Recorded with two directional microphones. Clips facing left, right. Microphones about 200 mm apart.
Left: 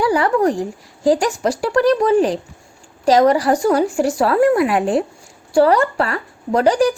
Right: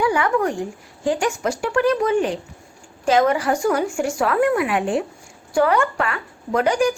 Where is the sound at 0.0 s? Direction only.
35° left (ahead or behind).